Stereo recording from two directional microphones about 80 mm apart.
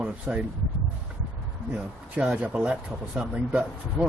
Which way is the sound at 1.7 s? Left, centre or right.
Centre.